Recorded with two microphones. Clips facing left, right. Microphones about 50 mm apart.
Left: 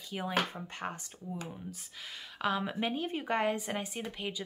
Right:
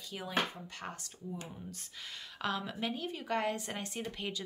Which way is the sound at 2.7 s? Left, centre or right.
Left.